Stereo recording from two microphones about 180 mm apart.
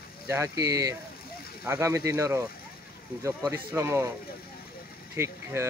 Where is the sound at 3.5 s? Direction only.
15° right (ahead or behind).